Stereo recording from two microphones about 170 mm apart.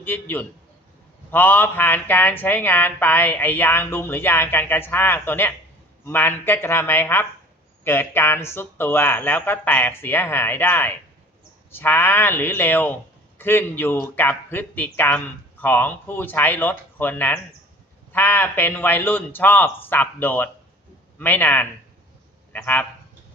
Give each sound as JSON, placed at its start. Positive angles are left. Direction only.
{"t": 0.0, "sound": "speech", "side_deg": 10}